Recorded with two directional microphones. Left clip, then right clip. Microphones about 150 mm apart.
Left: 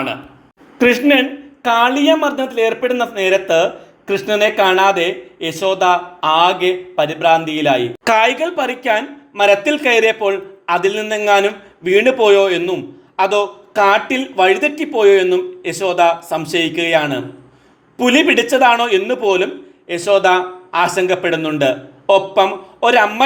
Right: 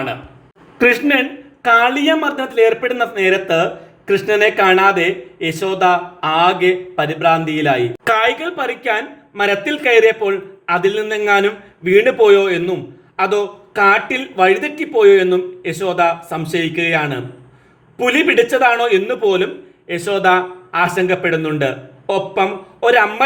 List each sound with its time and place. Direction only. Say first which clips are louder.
0.8 s speech: left 1 dB; 25° left (ahead or behind)
18.0 s speech: even; 30° left (ahead or behind)